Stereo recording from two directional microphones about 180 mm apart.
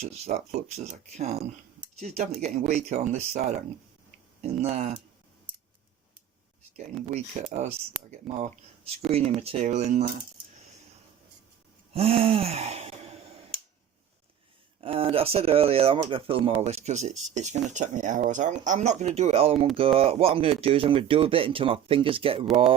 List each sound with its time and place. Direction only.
0.0 s speech: 35° right (ahead or behind)
8.3 s speech: centre (ahead or behind)
9.0 s speech: 35° right (ahead or behind)
11.9 s speech: 35° right (ahead or behind)
14.8 s speech: 30° right (ahead or behind)